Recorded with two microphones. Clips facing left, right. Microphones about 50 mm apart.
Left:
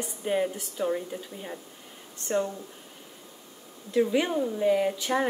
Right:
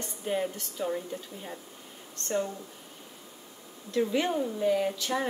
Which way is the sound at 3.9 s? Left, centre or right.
Centre.